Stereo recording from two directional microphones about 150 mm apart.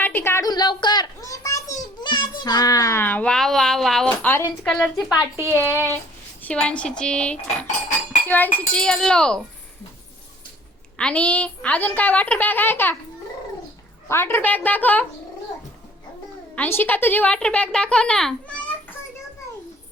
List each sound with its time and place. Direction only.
0.0 s a child's voice: 15° left (ahead or behind); by 5.2 s 5° right (ahead or behind)
5.5 s speech: 20° left (ahead or behind)
6.4 s speech: 5° left (ahead or behind)
10.9 s speech: 10° left (ahead or behind)
14.1 s speech: 15° left (ahead or behind)
16.6 s speech: 15° left (ahead or behind)